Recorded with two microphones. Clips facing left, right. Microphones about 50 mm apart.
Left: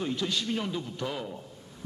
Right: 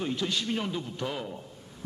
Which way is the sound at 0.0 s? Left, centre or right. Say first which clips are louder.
Even; centre.